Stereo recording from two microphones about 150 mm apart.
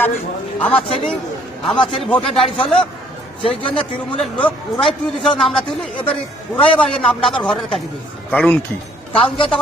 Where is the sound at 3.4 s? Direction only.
35° left (ahead or behind).